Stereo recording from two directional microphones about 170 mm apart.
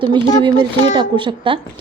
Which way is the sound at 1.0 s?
30° right (ahead or behind).